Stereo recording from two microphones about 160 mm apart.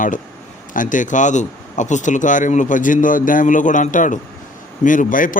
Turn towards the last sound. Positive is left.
turn(degrees=55)  # may be behind; listen again after turning